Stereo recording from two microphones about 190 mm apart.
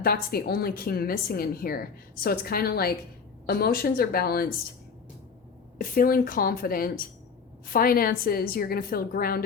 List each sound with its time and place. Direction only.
0.0 s a woman's voice: 55° left (ahead or behind)
5.7 s a woman's voice: 50° left (ahead or behind)